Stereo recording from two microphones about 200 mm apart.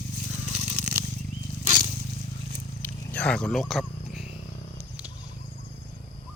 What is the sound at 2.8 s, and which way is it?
Wild animals, 5° left (ahead or behind).